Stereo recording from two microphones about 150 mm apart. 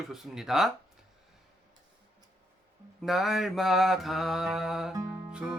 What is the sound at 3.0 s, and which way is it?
Speech, centre (ahead or behind).